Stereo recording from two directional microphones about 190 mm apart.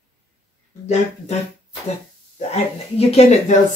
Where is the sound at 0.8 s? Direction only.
35° left (ahead or behind).